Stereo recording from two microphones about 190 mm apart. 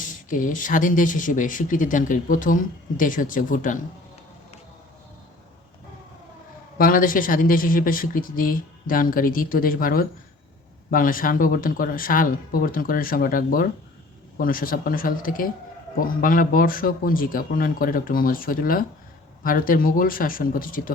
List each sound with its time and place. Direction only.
0.0 s speech: 45° left (ahead or behind)
6.7 s speech: 50° left (ahead or behind)